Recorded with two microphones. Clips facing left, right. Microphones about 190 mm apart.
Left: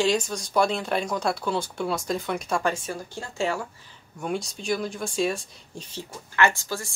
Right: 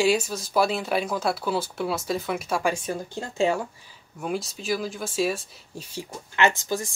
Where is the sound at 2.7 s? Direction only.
20° right (ahead or behind).